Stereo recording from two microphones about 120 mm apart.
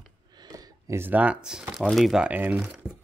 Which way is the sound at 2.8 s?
5° right (ahead or behind).